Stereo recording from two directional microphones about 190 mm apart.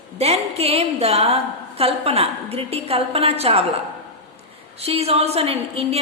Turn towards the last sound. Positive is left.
turn(degrees=-30)  # may be behind; listen again after turning